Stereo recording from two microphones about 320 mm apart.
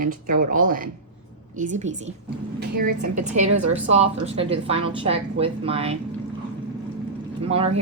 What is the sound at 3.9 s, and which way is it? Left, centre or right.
Speech, centre.